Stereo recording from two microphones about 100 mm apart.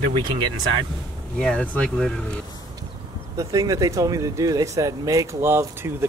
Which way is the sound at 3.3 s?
35° right (ahead or behind).